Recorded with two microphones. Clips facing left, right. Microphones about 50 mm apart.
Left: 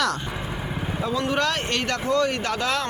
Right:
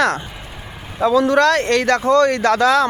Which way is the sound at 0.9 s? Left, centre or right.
Right.